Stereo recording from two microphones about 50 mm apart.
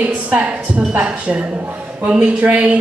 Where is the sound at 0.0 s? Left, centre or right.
Right.